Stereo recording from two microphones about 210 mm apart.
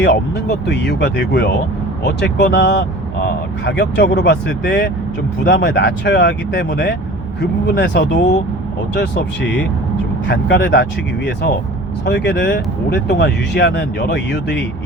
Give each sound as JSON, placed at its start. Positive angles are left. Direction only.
{"t": 0.0, "sound": "speech", "side_deg": 55}
{"t": 12.0, "sound": "speech", "side_deg": 55}